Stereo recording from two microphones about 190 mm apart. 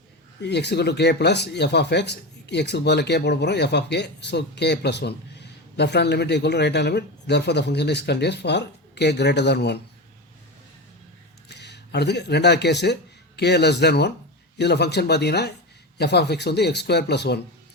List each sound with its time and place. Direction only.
0.4 s speech: 60° left (ahead or behind)
11.4 s speech: 60° left (ahead or behind)